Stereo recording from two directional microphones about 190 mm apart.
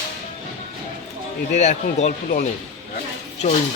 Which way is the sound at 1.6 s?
40° left (ahead or behind).